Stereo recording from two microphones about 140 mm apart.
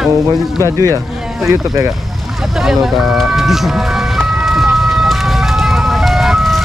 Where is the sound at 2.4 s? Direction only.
Centre (ahead or behind).